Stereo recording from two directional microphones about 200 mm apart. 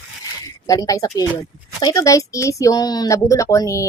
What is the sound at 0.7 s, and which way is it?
Speech, 15° left (ahead or behind).